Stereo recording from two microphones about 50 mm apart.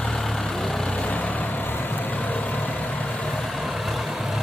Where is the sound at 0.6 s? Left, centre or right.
Centre.